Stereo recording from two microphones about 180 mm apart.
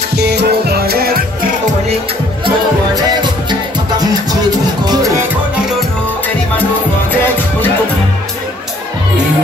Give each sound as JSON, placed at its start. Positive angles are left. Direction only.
{"t": 0.1, "sound": "music", "side_deg": -65}
{"t": 2.4, "sound": "music", "side_deg": -25}